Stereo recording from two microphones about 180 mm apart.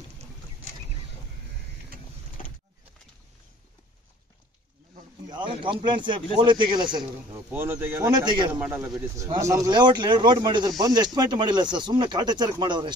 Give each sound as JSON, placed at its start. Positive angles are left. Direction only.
{"t": 2.4, "sound": "a sound", "side_deg": 50}
{"t": 5.3, "sound": "speech", "side_deg": -25}
{"t": 7.5, "sound": "speech", "side_deg": -10}
{"t": 8.1, "sound": "speech", "side_deg": -25}
{"t": 8.5, "sound": "speech", "side_deg": -10}